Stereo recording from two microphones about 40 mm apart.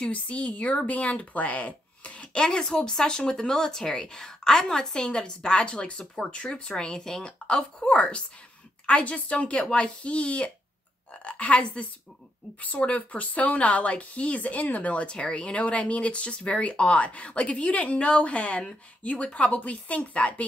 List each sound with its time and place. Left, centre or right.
0.1 s a woman's voice: left
7.9 s speech: left